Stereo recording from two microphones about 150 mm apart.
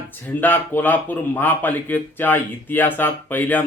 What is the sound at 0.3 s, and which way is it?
Speech, 15° left (ahead or behind).